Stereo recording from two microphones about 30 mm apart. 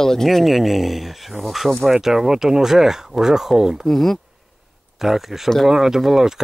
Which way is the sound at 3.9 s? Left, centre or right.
Centre.